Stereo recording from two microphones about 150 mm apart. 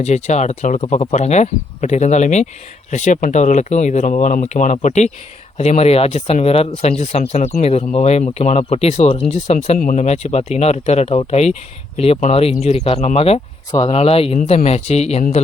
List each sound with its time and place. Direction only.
0.0 s speech: 50° left (ahead or behind)
9.7 s speech: 65° left (ahead or behind); by 15.2 s 45° left (ahead or behind)